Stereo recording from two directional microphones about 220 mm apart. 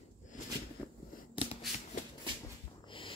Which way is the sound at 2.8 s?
25° left (ahead or behind).